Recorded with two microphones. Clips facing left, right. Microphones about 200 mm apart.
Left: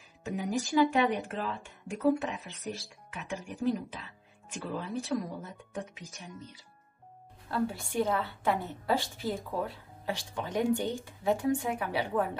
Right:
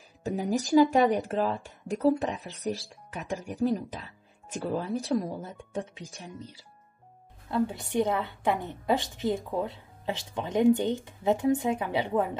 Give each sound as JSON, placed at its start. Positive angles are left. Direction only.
{"t": 0.4, "sound": "speech", "side_deg": -40}
{"t": 7.5, "sound": "a woman's voice", "side_deg": -20}